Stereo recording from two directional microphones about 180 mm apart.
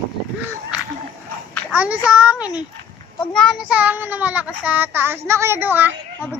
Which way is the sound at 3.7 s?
10° right (ahead or behind).